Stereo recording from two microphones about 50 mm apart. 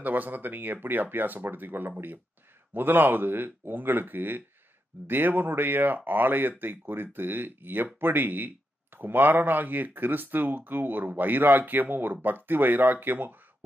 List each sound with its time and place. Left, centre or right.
0.0 s speech: right